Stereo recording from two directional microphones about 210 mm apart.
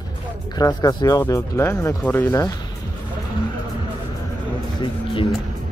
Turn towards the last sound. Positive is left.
turn(degrees=25)  # may be behind; listen again after turning